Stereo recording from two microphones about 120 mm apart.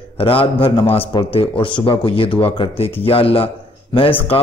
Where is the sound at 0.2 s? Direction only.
50° left (ahead or behind).